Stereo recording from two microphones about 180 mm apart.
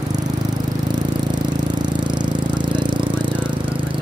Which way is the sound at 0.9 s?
25° right (ahead or behind).